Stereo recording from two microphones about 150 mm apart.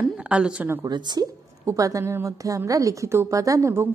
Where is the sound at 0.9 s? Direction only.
30° right (ahead or behind).